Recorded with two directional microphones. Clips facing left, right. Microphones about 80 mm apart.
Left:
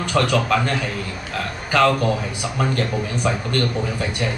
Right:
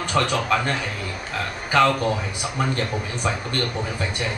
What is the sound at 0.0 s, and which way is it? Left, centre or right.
Speech, right.